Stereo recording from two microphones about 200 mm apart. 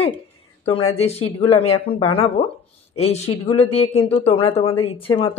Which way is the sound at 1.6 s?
30° left (ahead or behind).